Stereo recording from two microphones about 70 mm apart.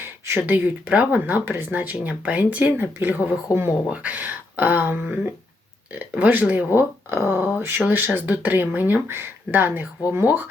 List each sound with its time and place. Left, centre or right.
0.0 s speech: right